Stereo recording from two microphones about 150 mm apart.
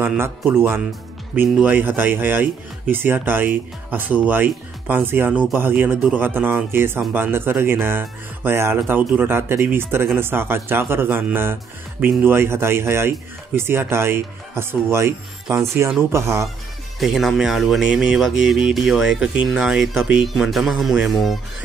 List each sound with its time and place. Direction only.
0.0 s speech: 10° right (ahead or behind)
17.0 s speech: centre (ahead or behind)